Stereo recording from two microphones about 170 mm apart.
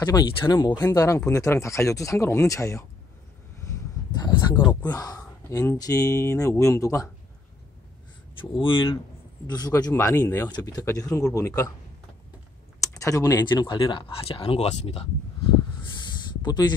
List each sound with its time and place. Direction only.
0.0 s speech: 25° left (ahead or behind)
8.4 s speech: 30° left (ahead or behind)
12.8 s speech: 20° left (ahead or behind); by 15.0 s 35° left (ahead or behind)